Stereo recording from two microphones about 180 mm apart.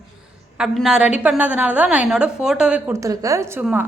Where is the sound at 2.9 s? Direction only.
20° right (ahead or behind).